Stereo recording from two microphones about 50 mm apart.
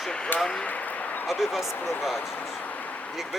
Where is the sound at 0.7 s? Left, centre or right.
Left.